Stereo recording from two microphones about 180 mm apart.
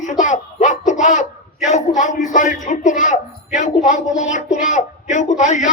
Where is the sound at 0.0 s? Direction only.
45° left (ahead or behind).